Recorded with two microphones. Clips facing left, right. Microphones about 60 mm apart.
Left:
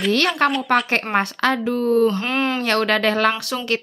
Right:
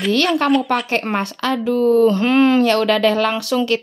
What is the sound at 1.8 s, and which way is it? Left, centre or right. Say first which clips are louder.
Speech: right 5 dB; right.